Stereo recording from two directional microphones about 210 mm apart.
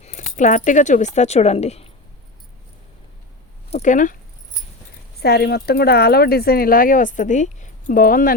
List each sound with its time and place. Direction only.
0.0 s speech: 35° left (ahead or behind)
3.7 s speech: 35° left (ahead or behind)
5.2 s speech: 50° left (ahead or behind)